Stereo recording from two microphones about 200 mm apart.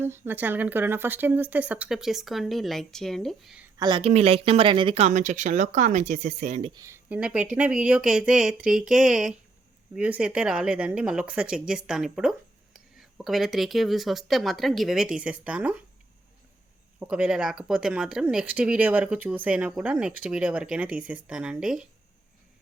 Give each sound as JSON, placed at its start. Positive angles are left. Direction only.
{"t": 0.0, "sound": "speech", "side_deg": -10}
{"t": 3.8, "sound": "speech", "side_deg": -25}
{"t": 17.0, "sound": "speech", "side_deg": -5}